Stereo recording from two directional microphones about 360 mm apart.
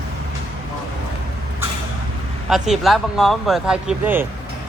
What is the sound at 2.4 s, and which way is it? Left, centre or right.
Speech, centre.